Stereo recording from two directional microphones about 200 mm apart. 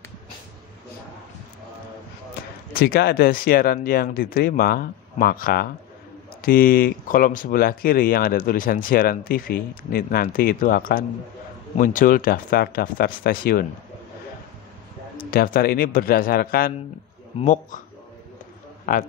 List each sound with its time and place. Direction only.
2.7 s speech: 50° left (ahead or behind)
15.3 s speech: 45° left (ahead or behind)
18.9 s speech: 45° left (ahead or behind)